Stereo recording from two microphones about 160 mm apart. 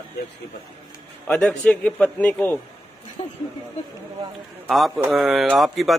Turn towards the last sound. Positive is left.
turn(degrees=0)  # may be behind; listen again after turning